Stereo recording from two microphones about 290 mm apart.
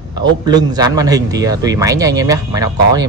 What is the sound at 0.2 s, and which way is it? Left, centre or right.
A man's voice, centre.